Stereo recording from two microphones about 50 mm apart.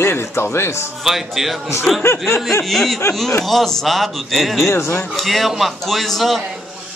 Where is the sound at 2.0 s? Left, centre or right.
Left.